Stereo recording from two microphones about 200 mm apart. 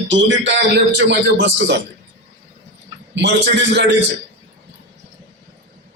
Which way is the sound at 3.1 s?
60° right (ahead or behind).